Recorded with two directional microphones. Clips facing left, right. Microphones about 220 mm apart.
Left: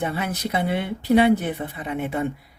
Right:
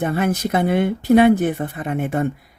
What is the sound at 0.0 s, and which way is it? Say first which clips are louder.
Speech: right 6 dB; 45° right (ahead or behind).